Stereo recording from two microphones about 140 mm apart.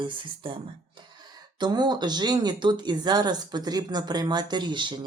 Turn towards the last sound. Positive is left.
turn(degrees=-35)  # may be behind; listen again after turning